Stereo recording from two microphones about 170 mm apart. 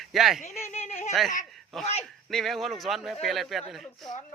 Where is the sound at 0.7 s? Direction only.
40° left (ahead or behind).